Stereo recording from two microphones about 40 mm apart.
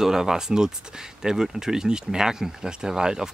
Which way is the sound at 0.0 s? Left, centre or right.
Centre.